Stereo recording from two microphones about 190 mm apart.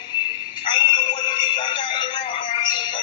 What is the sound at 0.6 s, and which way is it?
Music, 25° left (ahead or behind).